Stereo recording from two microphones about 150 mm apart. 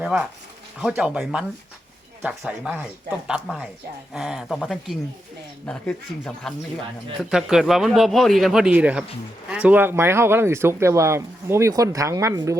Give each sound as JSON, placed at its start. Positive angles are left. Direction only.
{"t": 0.0, "sound": "a man's voice", "side_deg": -5}